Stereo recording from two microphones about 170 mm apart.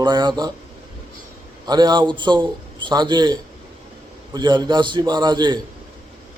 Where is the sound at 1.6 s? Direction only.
25° right (ahead or behind).